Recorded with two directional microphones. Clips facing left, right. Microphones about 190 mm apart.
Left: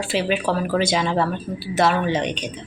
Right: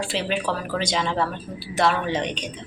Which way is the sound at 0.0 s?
5° left (ahead or behind).